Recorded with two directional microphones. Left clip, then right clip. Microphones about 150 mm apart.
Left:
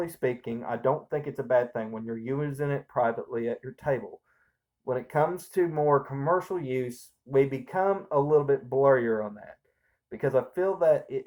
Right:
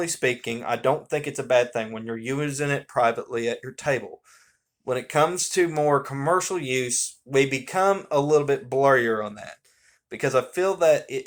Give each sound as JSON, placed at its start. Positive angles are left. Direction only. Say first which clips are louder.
{"t": 0.0, "sound": "speech", "louder": "right 5 dB", "side_deg": -20}
{"t": 8.1, "sound": "speech", "louder": "right 1 dB", "side_deg": -45}
{"t": 8.4, "sound": "speech", "louder": "right 2 dB", "side_deg": -20}